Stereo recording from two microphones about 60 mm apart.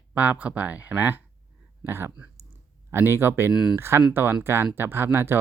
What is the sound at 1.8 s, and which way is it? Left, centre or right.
Speech, right.